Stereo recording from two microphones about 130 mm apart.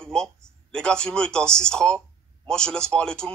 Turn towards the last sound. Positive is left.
turn(degrees=5)  # may be behind; listen again after turning